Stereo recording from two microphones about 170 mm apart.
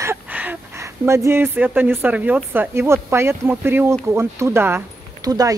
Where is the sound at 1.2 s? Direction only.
15° right (ahead or behind).